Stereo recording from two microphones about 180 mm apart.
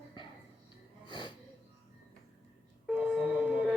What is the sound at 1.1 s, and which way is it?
Music, 25° left (ahead or behind).